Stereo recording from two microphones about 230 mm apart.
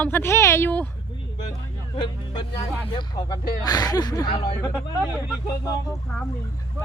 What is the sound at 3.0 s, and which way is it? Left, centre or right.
Speech, centre.